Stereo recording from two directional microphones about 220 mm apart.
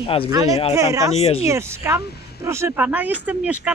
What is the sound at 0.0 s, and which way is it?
Speech, 25° left (ahead or behind).